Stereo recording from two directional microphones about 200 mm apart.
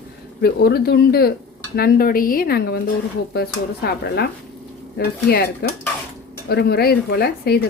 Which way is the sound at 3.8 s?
55° left (ahead or behind).